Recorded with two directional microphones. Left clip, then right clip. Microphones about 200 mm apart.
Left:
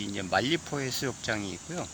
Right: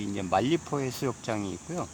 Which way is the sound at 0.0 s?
10° right (ahead or behind).